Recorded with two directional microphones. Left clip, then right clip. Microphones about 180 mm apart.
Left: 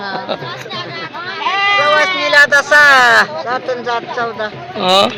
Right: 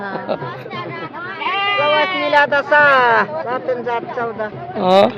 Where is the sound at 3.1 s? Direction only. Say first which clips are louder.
Left 4 dB; 20° right (ahead or behind).